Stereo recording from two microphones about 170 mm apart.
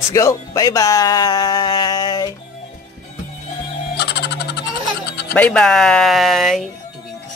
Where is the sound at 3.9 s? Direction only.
75° left (ahead or behind).